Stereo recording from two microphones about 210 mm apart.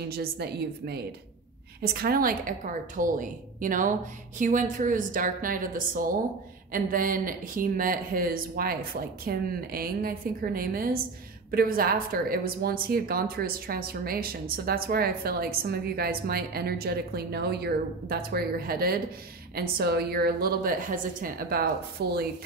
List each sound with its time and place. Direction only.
0.0 s a woman's voice: 50° right (ahead or behind)